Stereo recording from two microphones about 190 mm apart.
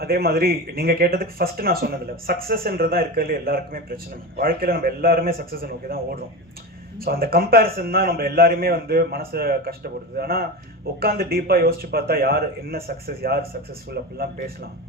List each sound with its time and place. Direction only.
0.0 s speech: 55° right (ahead or behind)